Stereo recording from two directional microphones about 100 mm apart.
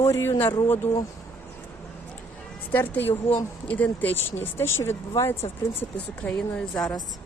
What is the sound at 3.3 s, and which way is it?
Speech, 70° left (ahead or behind).